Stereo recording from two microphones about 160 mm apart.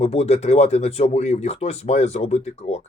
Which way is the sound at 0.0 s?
40° left (ahead or behind).